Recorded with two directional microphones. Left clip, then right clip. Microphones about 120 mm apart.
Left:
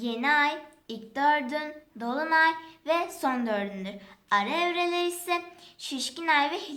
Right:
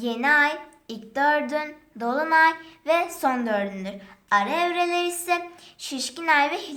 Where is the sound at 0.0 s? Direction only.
30° right (ahead or behind).